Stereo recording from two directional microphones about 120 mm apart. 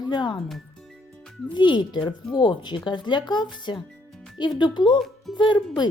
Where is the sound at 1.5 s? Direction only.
40° left (ahead or behind).